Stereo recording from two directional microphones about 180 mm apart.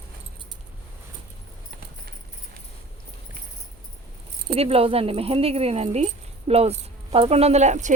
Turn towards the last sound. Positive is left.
turn(degrees=-40)  # may be behind; listen again after turning